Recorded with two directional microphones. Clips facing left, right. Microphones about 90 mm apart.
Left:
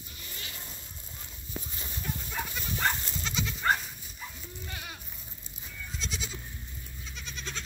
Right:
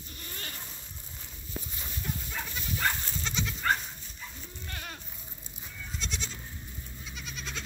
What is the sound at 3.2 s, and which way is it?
Goat, centre (ahead or behind).